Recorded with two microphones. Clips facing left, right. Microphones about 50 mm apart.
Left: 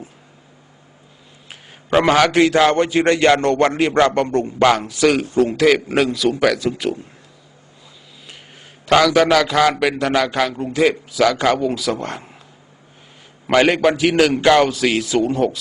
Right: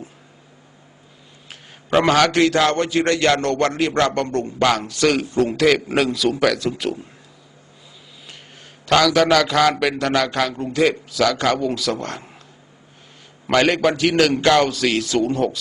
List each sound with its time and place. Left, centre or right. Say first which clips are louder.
1.5 s a man's voice: left 2 dB; centre
9.1 s a man's voice: left 1 dB; centre
13.5 s a man's voice: left 2 dB; centre